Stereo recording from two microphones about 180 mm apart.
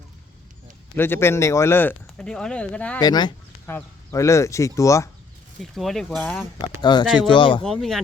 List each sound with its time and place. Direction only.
0.9 s speech: 10° left (ahead or behind)
3.0 s speech: 25° left (ahead or behind)
5.5 s speech: centre (ahead or behind)
6.6 s speech: 25° left (ahead or behind)
7.6 s speech: centre (ahead or behind)